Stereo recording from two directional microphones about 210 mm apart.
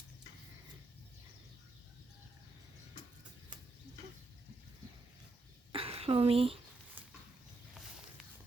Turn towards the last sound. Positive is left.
turn(degrees=-25)  # may be behind; listen again after turning